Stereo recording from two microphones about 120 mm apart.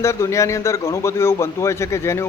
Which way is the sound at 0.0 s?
25° left (ahead or behind).